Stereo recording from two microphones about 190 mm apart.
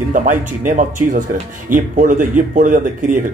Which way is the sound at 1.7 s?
45° right (ahead or behind).